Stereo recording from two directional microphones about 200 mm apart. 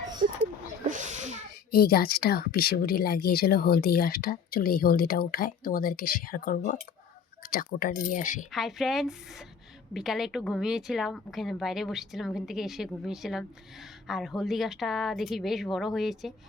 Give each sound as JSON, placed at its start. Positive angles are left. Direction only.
{"t": 0.9, "sound": "a sound", "side_deg": -40}
{"t": 1.7, "sound": "speech", "side_deg": 50}
{"t": 8.4, "sound": "speech", "side_deg": 0}